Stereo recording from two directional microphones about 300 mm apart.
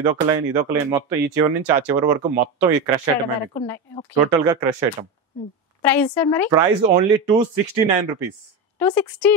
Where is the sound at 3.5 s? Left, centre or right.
Centre.